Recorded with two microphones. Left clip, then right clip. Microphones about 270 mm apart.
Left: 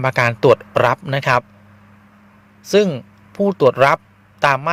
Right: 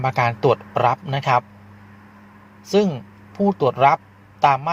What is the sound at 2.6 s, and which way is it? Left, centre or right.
A man's voice, left.